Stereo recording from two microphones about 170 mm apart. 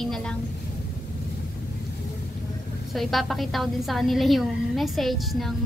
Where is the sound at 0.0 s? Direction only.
5° left (ahead or behind).